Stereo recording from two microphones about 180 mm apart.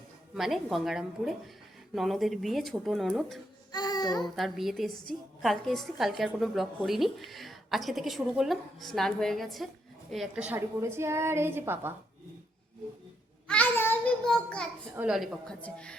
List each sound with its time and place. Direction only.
0.3 s a woman's voice: centre (ahead or behind)
3.7 s a sound: 20° left (ahead or behind)
4.2 s a woman's voice: centre (ahead or behind)
13.5 s child singing: 10° left (ahead or behind)
14.9 s a woman's voice: 5° right (ahead or behind)